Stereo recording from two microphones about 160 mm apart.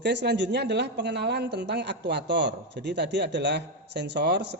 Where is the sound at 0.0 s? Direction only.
90° right.